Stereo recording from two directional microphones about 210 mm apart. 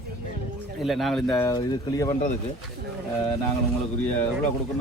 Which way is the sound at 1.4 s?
20° left (ahead or behind).